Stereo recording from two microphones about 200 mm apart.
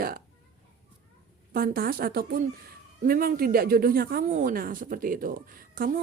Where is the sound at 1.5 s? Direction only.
45° right (ahead or behind).